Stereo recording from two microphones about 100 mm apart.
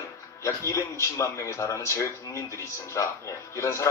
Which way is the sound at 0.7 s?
30° left (ahead or behind).